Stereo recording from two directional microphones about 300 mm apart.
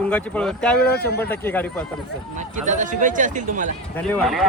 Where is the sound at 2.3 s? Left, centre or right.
Right.